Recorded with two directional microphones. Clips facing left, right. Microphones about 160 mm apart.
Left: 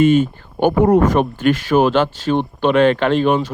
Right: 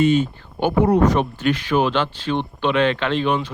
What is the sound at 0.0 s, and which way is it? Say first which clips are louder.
Speech: left 4 dB; 50° left (ahead or behind).